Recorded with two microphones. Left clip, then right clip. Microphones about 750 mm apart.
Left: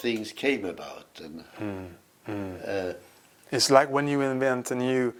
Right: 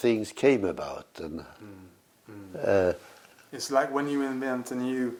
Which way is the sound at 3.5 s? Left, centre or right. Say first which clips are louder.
Left 6 dB; left.